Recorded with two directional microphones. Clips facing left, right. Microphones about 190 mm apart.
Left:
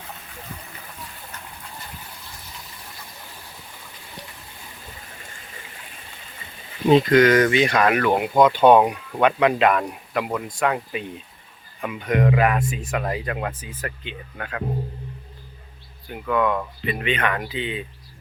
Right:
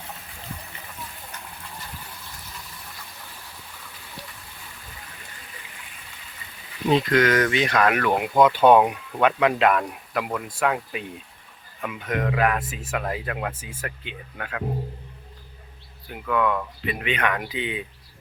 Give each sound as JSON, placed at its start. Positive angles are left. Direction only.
{"t": 7.1, "sound": "speech", "side_deg": 0}
{"t": 16.2, "sound": "speech", "side_deg": 5}